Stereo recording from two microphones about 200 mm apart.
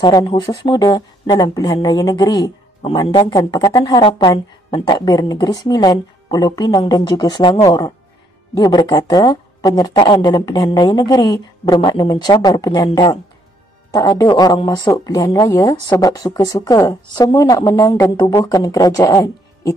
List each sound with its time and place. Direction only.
0.0 s speech: 20° left (ahead or behind)